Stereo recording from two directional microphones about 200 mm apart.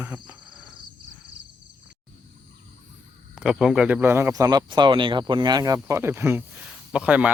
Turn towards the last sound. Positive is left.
turn(degrees=-5)  # may be behind; listen again after turning